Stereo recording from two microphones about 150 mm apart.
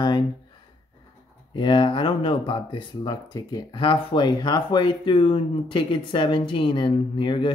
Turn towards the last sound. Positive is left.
turn(degrees=35)  # may be behind; listen again after turning